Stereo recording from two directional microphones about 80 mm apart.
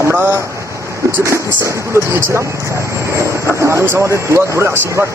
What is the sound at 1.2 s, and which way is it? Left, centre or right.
Speech, right.